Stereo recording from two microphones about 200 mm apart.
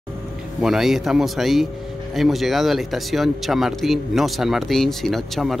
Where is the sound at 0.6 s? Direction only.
Centre (ahead or behind).